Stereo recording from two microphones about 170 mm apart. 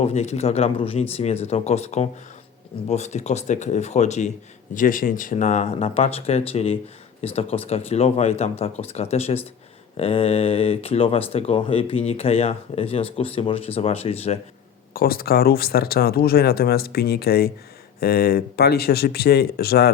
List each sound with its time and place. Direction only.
0.0 s speech: 40° left (ahead or behind)
14.9 s speech: 60° left (ahead or behind)